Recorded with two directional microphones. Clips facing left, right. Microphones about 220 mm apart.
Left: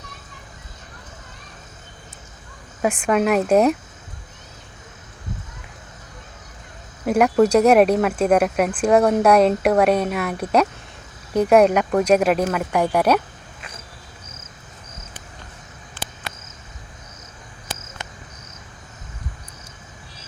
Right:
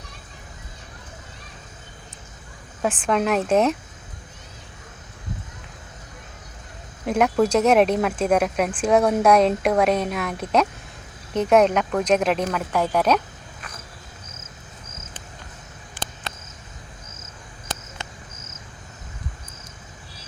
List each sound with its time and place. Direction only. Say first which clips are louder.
2.8 s speech: left 3 dB; 10° left (ahead or behind)
7.0 s speech: left 4 dB; 5° left (ahead or behind)
16.0 s cricket: even; 15° right (ahead or behind)